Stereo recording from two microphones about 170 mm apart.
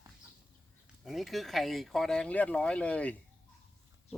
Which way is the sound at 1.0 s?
Centre (ahead or behind).